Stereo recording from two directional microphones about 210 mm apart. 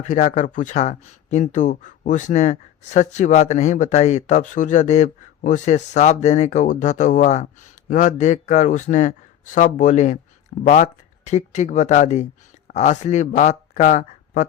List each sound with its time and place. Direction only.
0.0 s speech: 35° left (ahead or behind)